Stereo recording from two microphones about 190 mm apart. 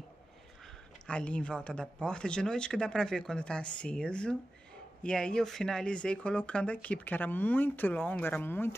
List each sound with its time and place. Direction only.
1.0 s speech: 5° left (ahead or behind)